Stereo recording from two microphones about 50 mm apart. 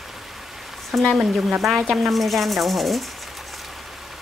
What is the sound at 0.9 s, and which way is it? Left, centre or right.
Speech, centre.